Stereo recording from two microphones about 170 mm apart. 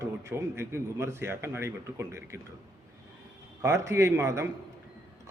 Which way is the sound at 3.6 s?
15° right (ahead or behind).